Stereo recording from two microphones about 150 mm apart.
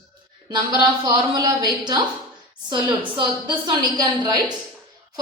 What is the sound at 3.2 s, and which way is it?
A woman's voice, 30° right (ahead or behind).